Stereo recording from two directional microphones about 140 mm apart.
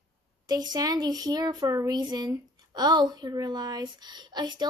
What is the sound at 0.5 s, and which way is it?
Speech, 30° right (ahead or behind).